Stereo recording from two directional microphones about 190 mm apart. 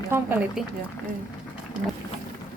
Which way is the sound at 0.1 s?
10° right (ahead or behind).